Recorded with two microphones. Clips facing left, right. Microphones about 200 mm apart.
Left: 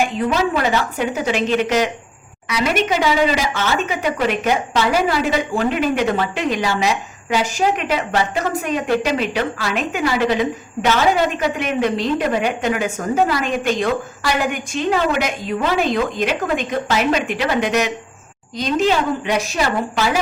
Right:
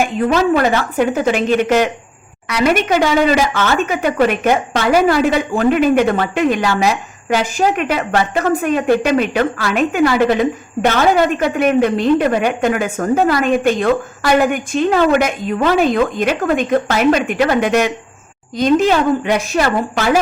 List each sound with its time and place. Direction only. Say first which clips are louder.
0.5 s a woman's voice: right 5 dB; 50° right (ahead or behind)